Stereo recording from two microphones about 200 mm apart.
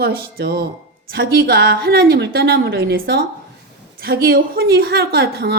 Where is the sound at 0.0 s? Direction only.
50° right (ahead or behind).